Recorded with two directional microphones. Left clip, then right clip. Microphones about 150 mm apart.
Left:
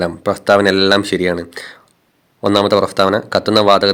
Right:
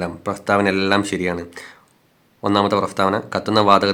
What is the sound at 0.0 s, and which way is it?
Speech, 30° left (ahead or behind).